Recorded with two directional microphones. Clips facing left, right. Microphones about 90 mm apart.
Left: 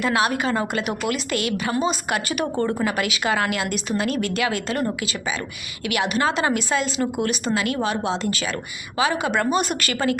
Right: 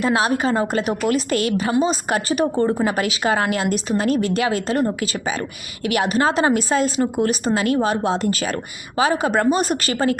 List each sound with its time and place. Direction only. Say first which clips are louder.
0.0 s a woman's voice: right 2 dB; 35° right (ahead or behind)
5.8 s a woman's voice: right 3 dB; 40° right (ahead or behind)